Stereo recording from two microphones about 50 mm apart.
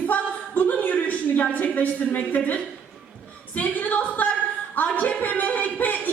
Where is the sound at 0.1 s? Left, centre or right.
Left.